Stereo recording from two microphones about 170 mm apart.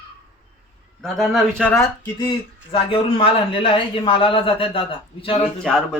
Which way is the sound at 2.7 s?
30° left (ahead or behind).